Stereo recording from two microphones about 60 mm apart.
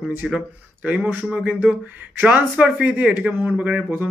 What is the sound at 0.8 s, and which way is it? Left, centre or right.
A man's voice, right.